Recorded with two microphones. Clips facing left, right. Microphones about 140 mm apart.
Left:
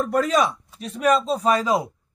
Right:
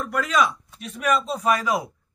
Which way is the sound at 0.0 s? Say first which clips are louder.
Left 3 dB; 35° left (ahead or behind).